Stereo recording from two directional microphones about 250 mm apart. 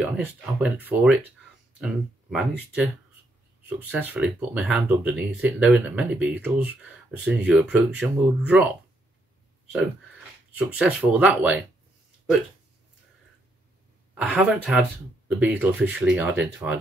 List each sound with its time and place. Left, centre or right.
0.0 s speech: centre
10.6 s speech: centre
14.1 s speech: centre